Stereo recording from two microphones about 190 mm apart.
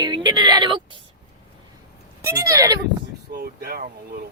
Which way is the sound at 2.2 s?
20° right (ahead or behind).